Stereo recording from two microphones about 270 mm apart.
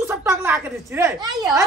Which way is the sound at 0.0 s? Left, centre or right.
Centre.